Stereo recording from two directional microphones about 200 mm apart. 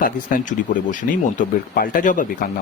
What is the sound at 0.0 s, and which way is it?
Speech, 40° left (ahead or behind).